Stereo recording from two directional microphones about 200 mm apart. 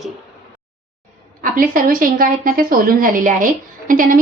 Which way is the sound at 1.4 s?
45° right (ahead or behind).